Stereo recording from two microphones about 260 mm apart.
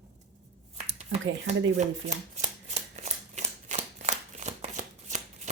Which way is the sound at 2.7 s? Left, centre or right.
Right.